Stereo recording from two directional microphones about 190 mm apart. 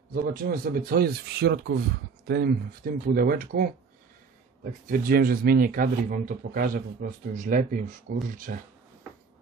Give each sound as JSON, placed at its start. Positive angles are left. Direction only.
{"t": 0.1, "sound": "speech", "side_deg": -50}
{"t": 4.8, "sound": "speech", "side_deg": -45}